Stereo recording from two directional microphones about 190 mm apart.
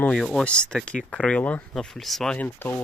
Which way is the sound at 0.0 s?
5° left (ahead or behind).